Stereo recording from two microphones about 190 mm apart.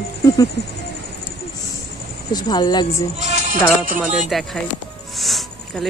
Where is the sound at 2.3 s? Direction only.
20° left (ahead or behind).